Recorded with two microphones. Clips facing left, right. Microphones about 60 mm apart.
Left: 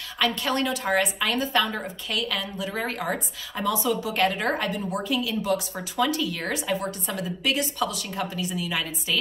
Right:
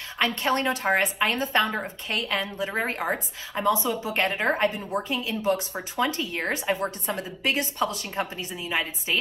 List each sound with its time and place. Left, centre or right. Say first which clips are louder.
0.2 s a woman's voice: right 1 dB; right